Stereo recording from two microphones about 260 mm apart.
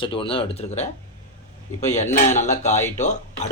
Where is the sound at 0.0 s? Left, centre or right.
Centre.